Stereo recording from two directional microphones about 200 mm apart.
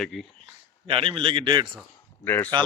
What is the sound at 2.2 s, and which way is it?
Speech, 10° left (ahead or behind).